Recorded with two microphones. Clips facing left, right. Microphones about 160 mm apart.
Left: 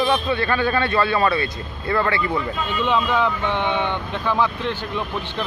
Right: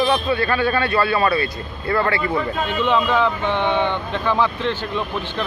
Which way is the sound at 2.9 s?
10° left (ahead or behind).